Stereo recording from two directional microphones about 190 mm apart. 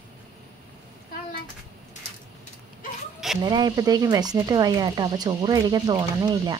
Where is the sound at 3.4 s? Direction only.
20° right (ahead or behind).